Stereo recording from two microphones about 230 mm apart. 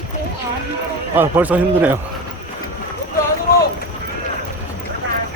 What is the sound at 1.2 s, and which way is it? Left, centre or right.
Speech, centre.